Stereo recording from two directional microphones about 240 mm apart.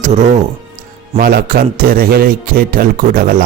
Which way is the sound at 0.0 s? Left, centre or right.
Right.